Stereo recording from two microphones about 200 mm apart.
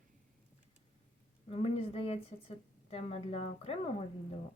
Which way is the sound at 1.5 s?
30° left (ahead or behind).